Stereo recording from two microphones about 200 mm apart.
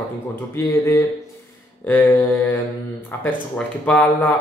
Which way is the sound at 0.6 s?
15° left (ahead or behind).